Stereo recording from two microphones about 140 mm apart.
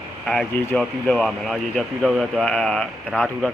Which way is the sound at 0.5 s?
15° left (ahead or behind).